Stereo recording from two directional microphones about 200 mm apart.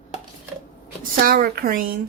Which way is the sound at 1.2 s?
50° right (ahead or behind).